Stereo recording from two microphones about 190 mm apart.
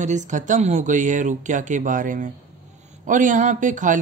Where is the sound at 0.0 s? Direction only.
40° right (ahead or behind).